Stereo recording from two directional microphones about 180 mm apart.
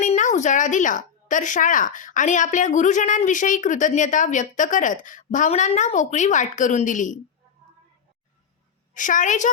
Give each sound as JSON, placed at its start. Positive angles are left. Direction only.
{"t": 0.0, "sound": "a woman's voice", "side_deg": 45}
{"t": 9.0, "sound": "a woman's voice", "side_deg": 45}